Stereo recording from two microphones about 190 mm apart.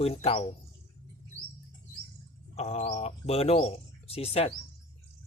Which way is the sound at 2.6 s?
35° left (ahead or behind).